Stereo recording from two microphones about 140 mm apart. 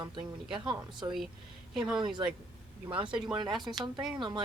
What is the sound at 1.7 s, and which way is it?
A woman's voice, 5° right (ahead or behind).